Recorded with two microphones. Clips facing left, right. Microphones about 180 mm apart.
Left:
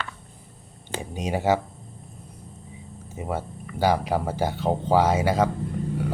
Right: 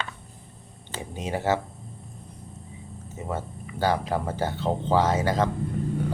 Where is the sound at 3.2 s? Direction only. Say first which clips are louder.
Left 2 dB; 10° left (ahead or behind).